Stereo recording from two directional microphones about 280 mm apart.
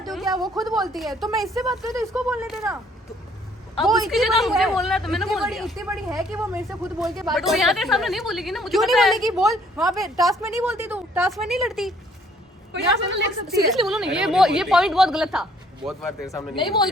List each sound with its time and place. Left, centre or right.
0.0 s a sound: centre
0.6 s speech: centre
3.8 s speech: centre
12.7 s a woman's voice: right
13.7 s speech: centre
16.2 s speech: centre